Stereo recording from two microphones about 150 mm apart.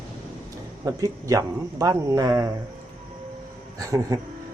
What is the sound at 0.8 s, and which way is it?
Speech, 25° right (ahead or behind).